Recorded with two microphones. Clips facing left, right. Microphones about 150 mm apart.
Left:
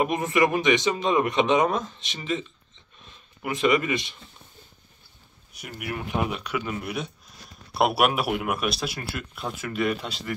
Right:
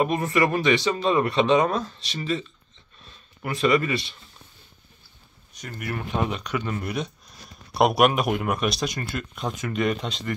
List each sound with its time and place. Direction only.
0.0 s speech: 15° left (ahead or behind)
3.4 s speech: 20° left (ahead or behind)
5.5 s speech: 10° left (ahead or behind)